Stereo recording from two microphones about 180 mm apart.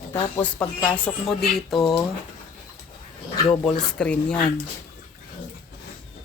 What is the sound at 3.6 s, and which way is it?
Speech, 5° left (ahead or behind).